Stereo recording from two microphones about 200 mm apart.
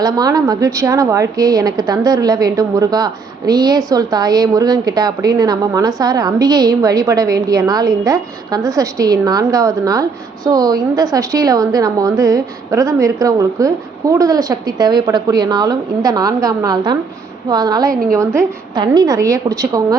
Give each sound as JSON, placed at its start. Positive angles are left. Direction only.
{"t": 0.0, "sound": "a woman's voice", "side_deg": -20}